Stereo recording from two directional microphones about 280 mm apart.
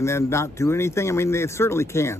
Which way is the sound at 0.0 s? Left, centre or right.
Centre.